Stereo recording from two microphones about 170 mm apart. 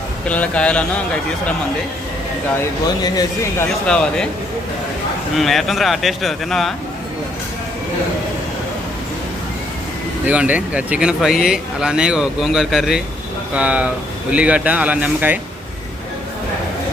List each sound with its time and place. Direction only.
0.3 s a man's voice: 5° left (ahead or behind)
3.0 s speech: 20° left (ahead or behind)
3.8 s speech: 5° left (ahead or behind)
5.4 s speech: centre (ahead or behind)
10.2 s speech: 10° right (ahead or behind)